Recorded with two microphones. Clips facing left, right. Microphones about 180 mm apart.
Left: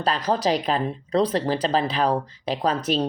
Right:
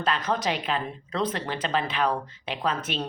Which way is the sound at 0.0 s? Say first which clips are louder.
Left 4 dB; 35° left (ahead or behind).